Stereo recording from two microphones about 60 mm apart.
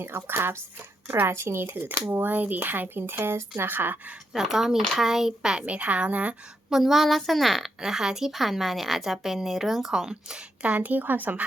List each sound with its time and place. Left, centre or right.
0.0 s speech: right
4.4 s a woman's voice: centre
5.6 s a woman's voice: right
6.7 s a woman's voice: centre
10.6 s a woman's voice: right